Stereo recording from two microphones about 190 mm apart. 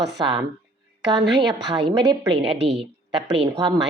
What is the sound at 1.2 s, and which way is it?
Speech, 65° right (ahead or behind).